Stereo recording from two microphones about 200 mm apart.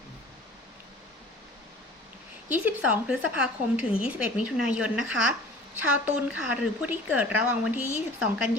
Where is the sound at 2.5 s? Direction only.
5° right (ahead or behind).